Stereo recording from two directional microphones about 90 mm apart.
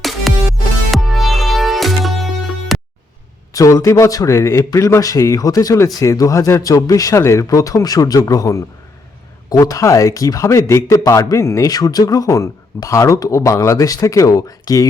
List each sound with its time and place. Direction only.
0.3 s music: centre (ahead or behind)
3.5 s speech: 40° left (ahead or behind)
11.7 s speech: 45° left (ahead or behind)